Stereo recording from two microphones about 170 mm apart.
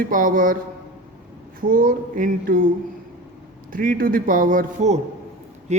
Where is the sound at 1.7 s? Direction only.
55° right (ahead or behind).